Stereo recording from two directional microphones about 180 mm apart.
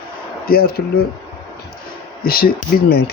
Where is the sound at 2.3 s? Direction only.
55° left (ahead or behind).